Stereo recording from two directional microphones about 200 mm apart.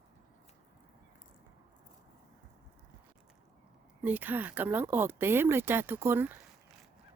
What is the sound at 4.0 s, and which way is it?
Speech, 10° right (ahead or behind).